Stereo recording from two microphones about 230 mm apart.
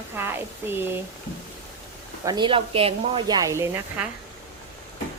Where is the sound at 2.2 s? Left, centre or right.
Centre.